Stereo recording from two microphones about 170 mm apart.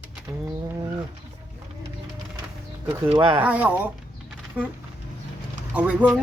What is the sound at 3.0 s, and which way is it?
Speech, 30° right (ahead or behind).